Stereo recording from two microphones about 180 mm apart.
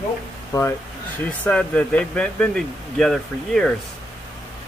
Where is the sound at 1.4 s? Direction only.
5° left (ahead or behind).